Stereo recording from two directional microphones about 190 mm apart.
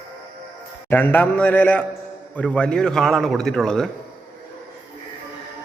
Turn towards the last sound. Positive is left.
turn(degrees=5)  # may be behind; listen again after turning